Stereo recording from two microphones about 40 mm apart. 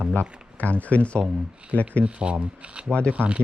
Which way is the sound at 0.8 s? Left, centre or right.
Left.